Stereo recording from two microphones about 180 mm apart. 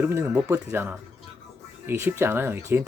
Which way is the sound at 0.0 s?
10° right (ahead or behind).